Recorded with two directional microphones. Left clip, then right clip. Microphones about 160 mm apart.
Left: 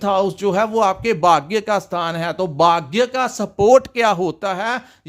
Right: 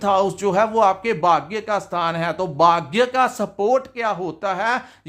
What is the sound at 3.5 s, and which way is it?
Speech, 45° left (ahead or behind).